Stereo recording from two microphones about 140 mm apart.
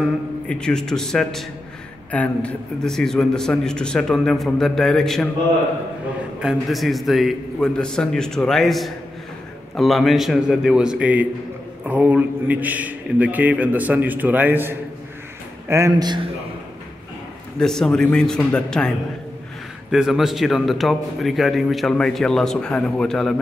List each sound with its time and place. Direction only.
0.5 s a man's voice: 5° left (ahead or behind)
6.4 s a man's voice: centre (ahead or behind)
15.7 s speech: 25° right (ahead or behind)
17.6 s a man's voice: 5° left (ahead or behind)